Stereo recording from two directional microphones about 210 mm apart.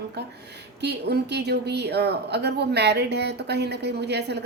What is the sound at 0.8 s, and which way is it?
A woman's voice, 50° right (ahead or behind).